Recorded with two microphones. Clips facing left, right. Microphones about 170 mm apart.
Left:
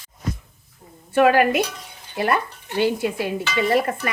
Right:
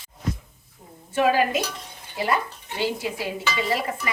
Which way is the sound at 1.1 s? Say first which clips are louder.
Left 5 dB; 60° left (ahead or behind).